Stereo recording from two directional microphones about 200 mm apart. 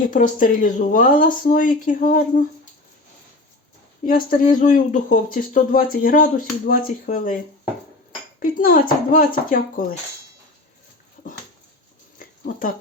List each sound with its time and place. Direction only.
0.1 s speech: 40° left (ahead or behind)
4.0 s speech: 45° left (ahead or behind)
8.5 s speech: 45° left (ahead or behind)